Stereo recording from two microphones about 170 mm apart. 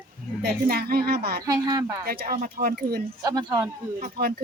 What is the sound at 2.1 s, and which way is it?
Speech, 60° right (ahead or behind).